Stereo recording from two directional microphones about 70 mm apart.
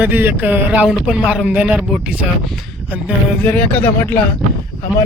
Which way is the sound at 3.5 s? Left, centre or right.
Left.